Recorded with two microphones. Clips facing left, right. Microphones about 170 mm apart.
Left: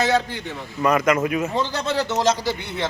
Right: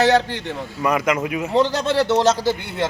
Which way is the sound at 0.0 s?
85° right.